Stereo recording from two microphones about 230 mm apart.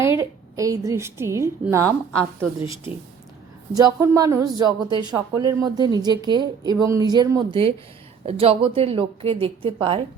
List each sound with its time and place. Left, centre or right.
0.0 s a woman's voice: centre